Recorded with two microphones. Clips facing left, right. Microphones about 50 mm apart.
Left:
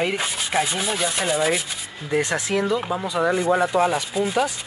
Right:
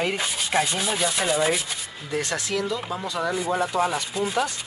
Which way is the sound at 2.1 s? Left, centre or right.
Left.